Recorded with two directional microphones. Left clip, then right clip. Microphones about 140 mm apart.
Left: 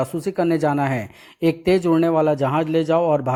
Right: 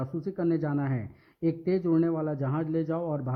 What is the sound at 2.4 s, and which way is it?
Speech, 30° left (ahead or behind).